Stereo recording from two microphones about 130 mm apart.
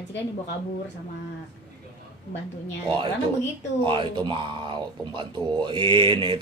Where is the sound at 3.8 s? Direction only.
40° right (ahead or behind).